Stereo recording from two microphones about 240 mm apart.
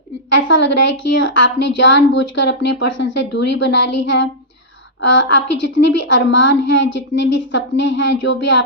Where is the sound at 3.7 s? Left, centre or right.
Left.